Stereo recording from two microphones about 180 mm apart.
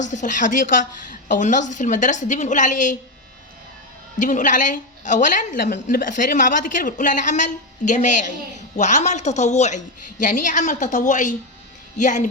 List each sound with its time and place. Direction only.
0.0 s a woman's voice: 45° left (ahead or behind)
4.2 s a woman's voice: 45° left (ahead or behind)